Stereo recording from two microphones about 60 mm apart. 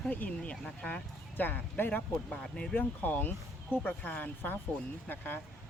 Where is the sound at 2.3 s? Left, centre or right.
Centre.